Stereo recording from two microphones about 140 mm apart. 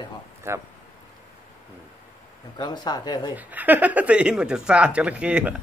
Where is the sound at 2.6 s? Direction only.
30° left (ahead or behind).